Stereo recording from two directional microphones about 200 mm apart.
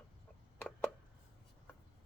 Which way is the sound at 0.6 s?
5° left (ahead or behind).